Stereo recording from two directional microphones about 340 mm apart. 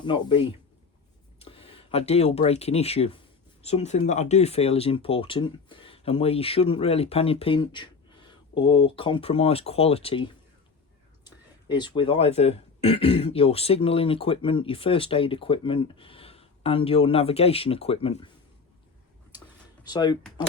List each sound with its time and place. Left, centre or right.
0.0 s speech: centre
1.5 s speech: centre
11.7 s speech: centre
19.8 s speech: centre